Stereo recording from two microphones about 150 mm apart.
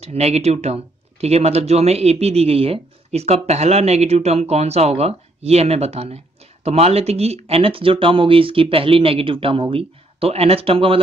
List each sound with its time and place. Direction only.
0.0 s speech: 45° right (ahead or behind)